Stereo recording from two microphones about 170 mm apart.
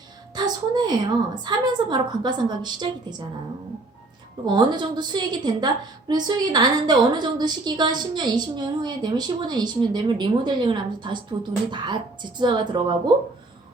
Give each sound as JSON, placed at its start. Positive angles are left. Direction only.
{"t": 0.3, "sound": "a woman's voice", "side_deg": -25}
{"t": 4.4, "sound": "a woman's voice", "side_deg": -25}